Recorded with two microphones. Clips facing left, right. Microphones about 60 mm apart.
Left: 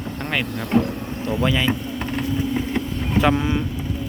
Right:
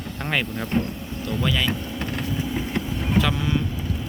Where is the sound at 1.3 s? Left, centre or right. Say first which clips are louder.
Left 4 dB; centre.